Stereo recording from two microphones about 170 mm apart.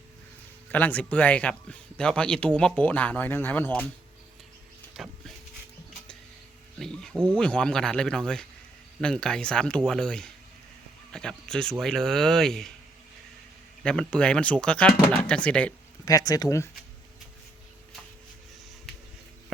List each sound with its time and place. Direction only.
0.7 s speech: 10° left (ahead or behind)
4.9 s speech: centre (ahead or behind)
6.7 s insect: 5° left (ahead or behind)
7.3 s speech: 5° left (ahead or behind)
13.8 s speech: 5° left (ahead or behind)
16.0 s speech: 20° left (ahead or behind)